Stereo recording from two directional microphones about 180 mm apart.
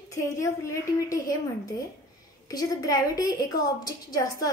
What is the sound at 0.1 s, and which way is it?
Speech, 15° left (ahead or behind).